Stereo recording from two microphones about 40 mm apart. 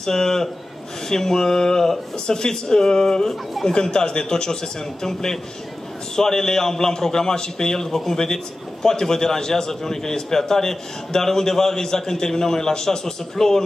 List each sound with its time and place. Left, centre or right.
0.0 s a man's voice: centre